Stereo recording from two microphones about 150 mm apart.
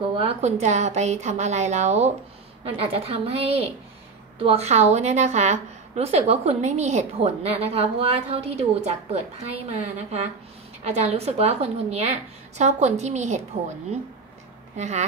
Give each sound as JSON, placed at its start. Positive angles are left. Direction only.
{"t": 0.1, "sound": "a woman's voice", "side_deg": -45}
{"t": 14.8, "sound": "a woman's voice", "side_deg": -50}